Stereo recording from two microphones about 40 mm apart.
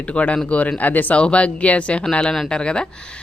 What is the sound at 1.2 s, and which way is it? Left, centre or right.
Speech, left.